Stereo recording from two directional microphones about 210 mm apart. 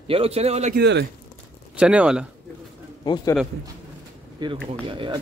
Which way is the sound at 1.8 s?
5° right (ahead or behind).